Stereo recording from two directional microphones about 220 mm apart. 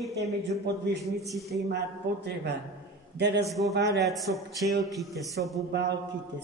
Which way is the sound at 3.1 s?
50° right (ahead or behind).